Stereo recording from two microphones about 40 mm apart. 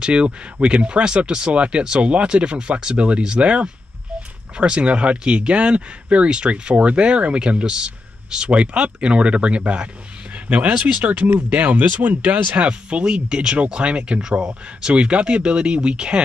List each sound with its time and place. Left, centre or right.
0.0 s speech: right
12.6 s speech: right